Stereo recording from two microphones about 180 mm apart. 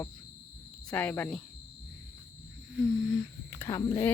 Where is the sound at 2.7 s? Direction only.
5° left (ahead or behind).